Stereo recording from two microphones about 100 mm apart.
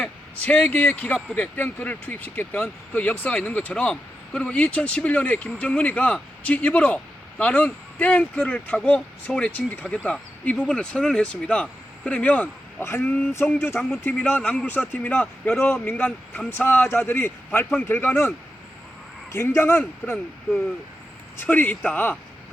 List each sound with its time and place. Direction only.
0.0 s speech: 10° left (ahead or behind)
12.8 s speech: 25° left (ahead or behind)
21.4 s speech: 15° left (ahead or behind)